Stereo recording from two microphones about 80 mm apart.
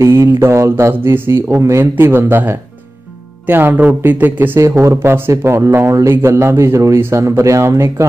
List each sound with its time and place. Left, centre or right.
0.0 s speech: right
4.6 s speech: right